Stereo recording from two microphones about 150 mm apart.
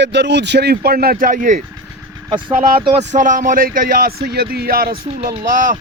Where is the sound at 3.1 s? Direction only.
60° right (ahead or behind); by 4.9 s 75° right (ahead or behind).